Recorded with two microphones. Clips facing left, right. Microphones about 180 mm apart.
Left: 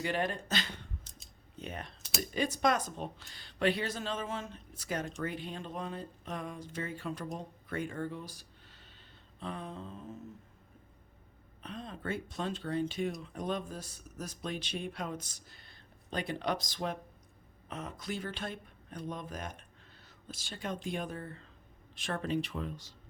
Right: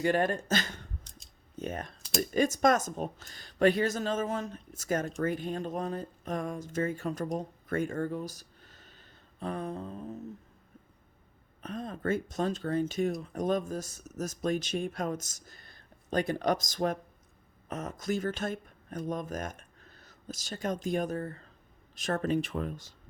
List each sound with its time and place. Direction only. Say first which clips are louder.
0.0 s speech: right 6 dB; 45° right (ahead or behind)
11.6 s speech: right 7 dB; 45° right (ahead or behind)